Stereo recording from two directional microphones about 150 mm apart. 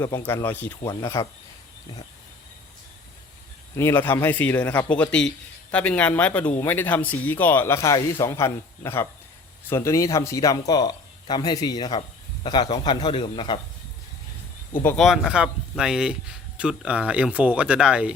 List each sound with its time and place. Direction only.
0.0 s a man's voice: 15° left (ahead or behind)
0.9 s speech: 25° left (ahead or behind)
3.8 s a man's voice: 15° left (ahead or behind); by 13.6 s 35° left (ahead or behind)
14.9 s speech: centre (ahead or behind)